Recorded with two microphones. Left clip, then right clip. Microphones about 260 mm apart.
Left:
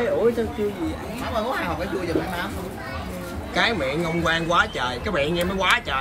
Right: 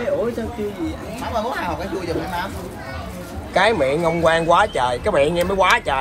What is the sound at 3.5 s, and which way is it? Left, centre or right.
A man's voice, centre.